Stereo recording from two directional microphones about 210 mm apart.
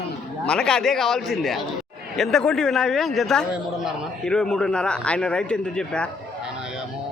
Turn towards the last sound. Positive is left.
turn(degrees=5)  # may be behind; listen again after turning